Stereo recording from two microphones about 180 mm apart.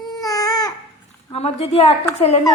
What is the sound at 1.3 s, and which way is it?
Speech, 35° left (ahead or behind).